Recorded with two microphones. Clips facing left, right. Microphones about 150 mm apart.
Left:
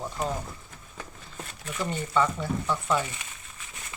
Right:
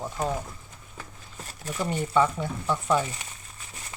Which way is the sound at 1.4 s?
40° right (ahead or behind).